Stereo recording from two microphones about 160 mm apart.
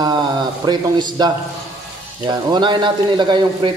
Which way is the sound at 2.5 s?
30° right (ahead or behind).